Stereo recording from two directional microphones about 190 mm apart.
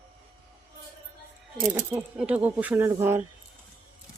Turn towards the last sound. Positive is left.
turn(degrees=-10)  # may be behind; listen again after turning